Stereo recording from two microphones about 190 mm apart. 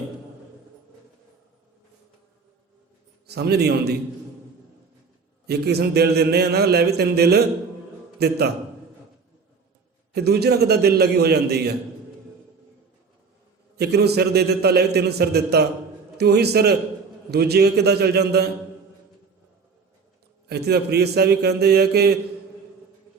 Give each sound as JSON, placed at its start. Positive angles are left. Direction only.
{"t": 3.2, "sound": "a man's voice", "side_deg": -60}
{"t": 5.5, "sound": "a man's voice", "side_deg": -55}
{"t": 10.1, "sound": "a man's voice", "side_deg": -60}
{"t": 13.7, "sound": "a man's voice", "side_deg": -60}
{"t": 20.5, "sound": "a man's voice", "side_deg": -60}